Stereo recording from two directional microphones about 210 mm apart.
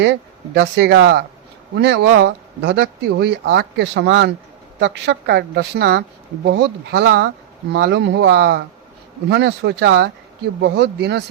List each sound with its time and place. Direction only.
0.0 s speech: 55° right (ahead or behind)